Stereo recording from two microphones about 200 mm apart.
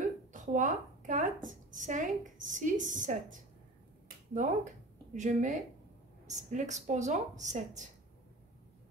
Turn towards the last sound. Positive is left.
turn(degrees=-35)  # may be behind; listen again after turning